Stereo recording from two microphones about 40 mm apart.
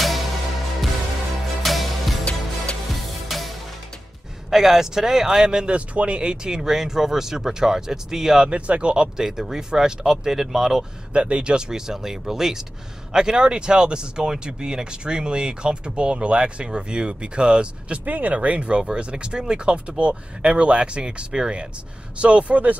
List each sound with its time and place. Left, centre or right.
1.6 s music: centre
2.2 s music: left
2.9 s music: centre
4.5 s speech: centre
8.5 s speech: right; by 10.9 s centre
11.1 s speech: right
18.0 s speech: right